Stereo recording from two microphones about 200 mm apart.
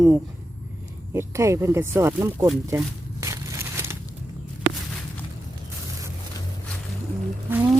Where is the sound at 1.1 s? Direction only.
15° right (ahead or behind).